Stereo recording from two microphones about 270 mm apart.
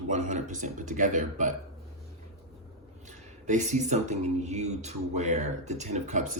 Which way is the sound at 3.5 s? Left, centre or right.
Right.